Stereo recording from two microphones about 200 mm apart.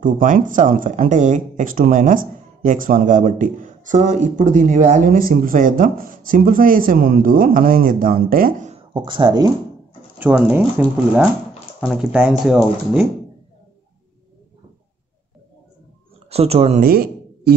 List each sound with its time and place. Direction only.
0.0 s speech: 40° right (ahead or behind); by 9.5 s 20° right (ahead or behind)
10.1 s speech: 5° right (ahead or behind)
16.3 s speech: 30° right (ahead or behind)
16.8 s a sound: 50° right (ahead or behind)